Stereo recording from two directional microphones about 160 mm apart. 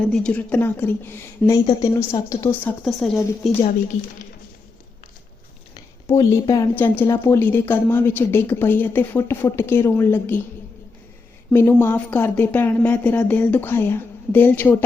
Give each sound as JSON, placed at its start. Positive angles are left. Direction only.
{"t": 0.0, "sound": "a woman's voice", "side_deg": 5}
{"t": 2.8, "sound": "speech", "side_deg": 0}
{"t": 3.9, "sound": "speech", "side_deg": 50}
{"t": 6.1, "sound": "speech", "side_deg": 20}
{"t": 6.7, "sound": "a woman's voice", "side_deg": 15}
{"t": 11.5, "sound": "a woman's voice", "side_deg": 15}